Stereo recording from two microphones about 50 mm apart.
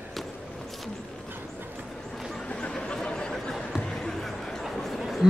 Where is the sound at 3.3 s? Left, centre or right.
Centre.